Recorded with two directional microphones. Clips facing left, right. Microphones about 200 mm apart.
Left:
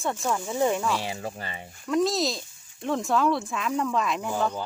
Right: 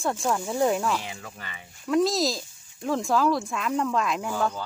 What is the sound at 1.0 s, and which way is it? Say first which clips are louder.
Speech: left 6 dB; 35° left (ahead or behind).